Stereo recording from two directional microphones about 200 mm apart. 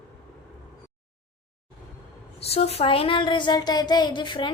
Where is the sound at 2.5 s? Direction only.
30° left (ahead or behind).